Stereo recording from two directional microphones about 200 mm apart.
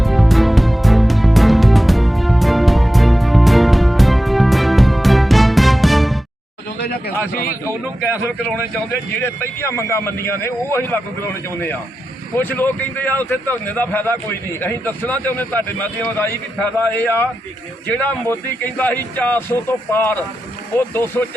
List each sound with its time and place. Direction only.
0.0 s music: centre (ahead or behind)
9.2 s a man's voice: 10° left (ahead or behind)